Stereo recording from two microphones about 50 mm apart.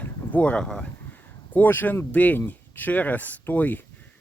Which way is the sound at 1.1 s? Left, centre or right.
Left.